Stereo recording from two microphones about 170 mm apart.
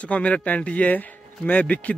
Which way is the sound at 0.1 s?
5° left (ahead or behind).